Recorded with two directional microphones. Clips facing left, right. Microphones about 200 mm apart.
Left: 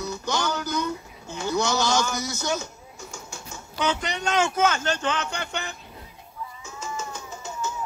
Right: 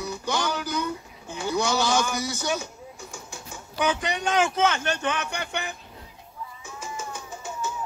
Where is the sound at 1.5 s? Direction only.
15° right (ahead or behind).